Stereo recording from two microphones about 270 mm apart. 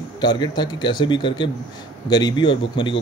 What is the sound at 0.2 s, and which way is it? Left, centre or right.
A man's voice, centre.